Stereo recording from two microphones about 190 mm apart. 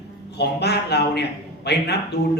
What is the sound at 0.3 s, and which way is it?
A man's voice, 60° left (ahead or behind).